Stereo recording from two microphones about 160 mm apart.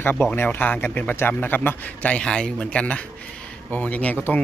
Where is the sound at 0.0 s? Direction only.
10° left (ahead or behind).